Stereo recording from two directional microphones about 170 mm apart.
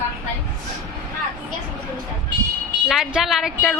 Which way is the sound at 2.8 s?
5° right (ahead or behind).